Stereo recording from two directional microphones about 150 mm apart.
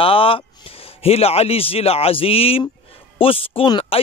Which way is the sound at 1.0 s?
40° left (ahead or behind).